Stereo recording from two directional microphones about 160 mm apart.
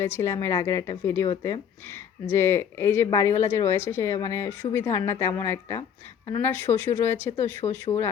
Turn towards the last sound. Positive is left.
turn(degrees=25)  # may be behind; listen again after turning